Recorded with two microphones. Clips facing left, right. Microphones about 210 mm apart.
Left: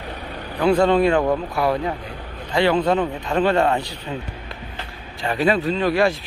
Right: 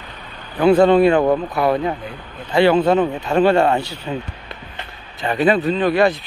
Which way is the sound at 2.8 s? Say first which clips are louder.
Right 4 dB; 25° right (ahead or behind).